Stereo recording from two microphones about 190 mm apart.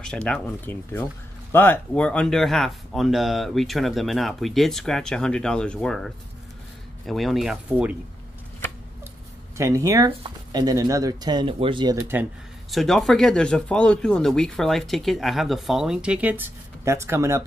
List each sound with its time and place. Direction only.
0.0 s speech: 5° left (ahead or behind)
9.6 s speech: 15° right (ahead or behind)
12.7 s speech: centre (ahead or behind); by 17.4 s 15° right (ahead or behind)